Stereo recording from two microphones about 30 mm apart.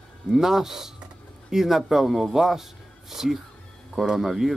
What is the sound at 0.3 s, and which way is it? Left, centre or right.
Speech, centre.